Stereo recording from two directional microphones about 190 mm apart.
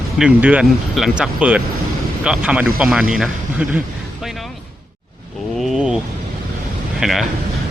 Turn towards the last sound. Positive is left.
turn(degrees=0)  # may be behind; listen again after turning